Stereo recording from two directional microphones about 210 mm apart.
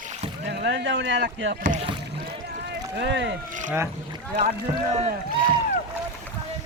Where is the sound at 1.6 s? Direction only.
35° right (ahead or behind).